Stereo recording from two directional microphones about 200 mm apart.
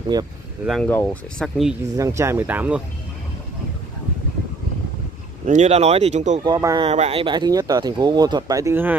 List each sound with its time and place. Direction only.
0.1 s speech: 20° right (ahead or behind)
0.7 s speech: 5° left (ahead or behind)
2.0 s speech: 15° right (ahead or behind)
5.4 s speech: 35° right (ahead or behind)
6.4 s speech: 20° right (ahead or behind)
6.9 s speech: 30° right (ahead or behind); by 8.9 s 10° right (ahead or behind)